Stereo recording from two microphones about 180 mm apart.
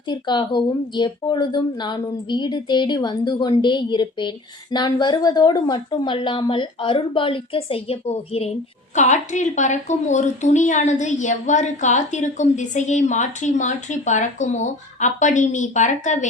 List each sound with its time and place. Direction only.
0.1 s a woman's voice: 25° left (ahead or behind); by 16.1 s 40° left (ahead or behind)